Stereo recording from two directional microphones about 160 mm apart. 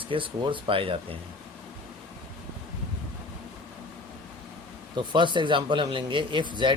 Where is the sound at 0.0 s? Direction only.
30° right (ahead or behind).